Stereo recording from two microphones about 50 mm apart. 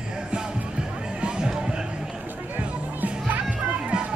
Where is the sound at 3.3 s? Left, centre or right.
Right.